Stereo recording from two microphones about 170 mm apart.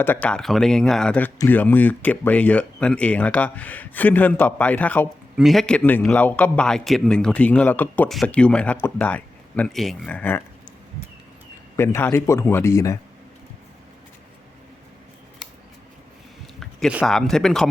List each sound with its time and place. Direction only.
0.0 s a man's voice: 10° left (ahead or behind)
11.8 s a man's voice: 15° left (ahead or behind)
17.1 s speech: 5° left (ahead or behind)